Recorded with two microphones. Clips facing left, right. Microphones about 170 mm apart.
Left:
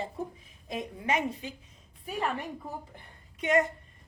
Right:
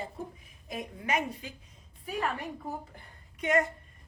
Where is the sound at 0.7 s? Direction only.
25° left (ahead or behind).